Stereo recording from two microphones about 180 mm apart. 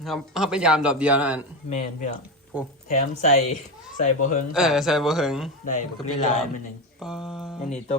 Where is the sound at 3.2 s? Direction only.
40° left (ahead or behind).